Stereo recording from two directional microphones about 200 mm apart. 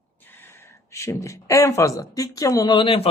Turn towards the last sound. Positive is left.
turn(degrees=25)  # may be behind; listen again after turning